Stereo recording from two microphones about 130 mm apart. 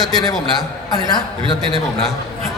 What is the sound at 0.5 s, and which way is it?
A man's voice, 30° left (ahead or behind).